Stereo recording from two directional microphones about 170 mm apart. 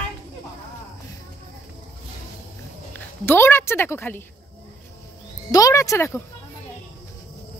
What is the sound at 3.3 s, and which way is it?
Speech, 15° left (ahead or behind).